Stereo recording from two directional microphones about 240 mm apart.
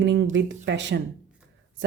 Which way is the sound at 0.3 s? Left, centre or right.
Right.